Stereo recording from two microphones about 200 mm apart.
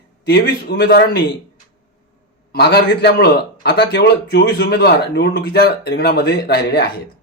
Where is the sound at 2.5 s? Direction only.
55° left (ahead or behind).